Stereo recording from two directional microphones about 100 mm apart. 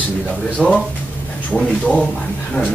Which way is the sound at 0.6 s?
10° left (ahead or behind).